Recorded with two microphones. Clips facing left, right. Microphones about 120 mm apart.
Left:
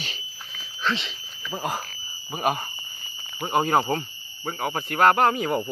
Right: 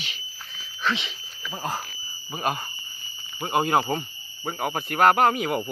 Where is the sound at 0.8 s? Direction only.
5° right (ahead or behind).